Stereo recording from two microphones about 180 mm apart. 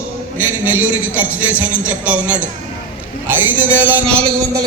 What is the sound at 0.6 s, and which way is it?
Speech, 10° right (ahead or behind).